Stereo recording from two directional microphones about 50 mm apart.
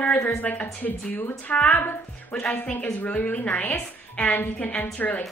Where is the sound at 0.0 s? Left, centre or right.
Left.